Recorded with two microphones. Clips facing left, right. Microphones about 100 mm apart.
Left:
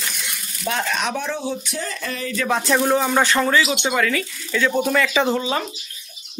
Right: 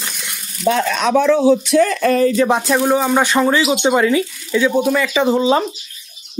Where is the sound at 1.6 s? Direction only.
65° right (ahead or behind).